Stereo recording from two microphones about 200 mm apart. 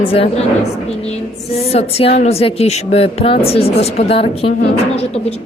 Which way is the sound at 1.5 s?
30° left (ahead or behind).